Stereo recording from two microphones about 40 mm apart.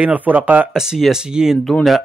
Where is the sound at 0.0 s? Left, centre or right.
Right.